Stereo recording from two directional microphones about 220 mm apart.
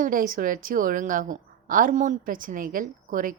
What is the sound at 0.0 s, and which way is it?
A woman's voice, 40° right (ahead or behind).